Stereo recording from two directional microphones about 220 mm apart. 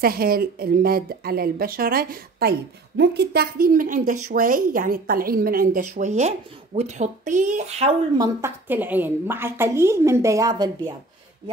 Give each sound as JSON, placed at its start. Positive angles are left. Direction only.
{"t": 0.0, "sound": "a woman's voice", "side_deg": -40}
{"t": 8.2, "sound": "a woman's voice", "side_deg": -10}